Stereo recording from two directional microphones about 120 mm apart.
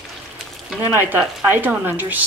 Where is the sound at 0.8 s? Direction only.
15° right (ahead or behind).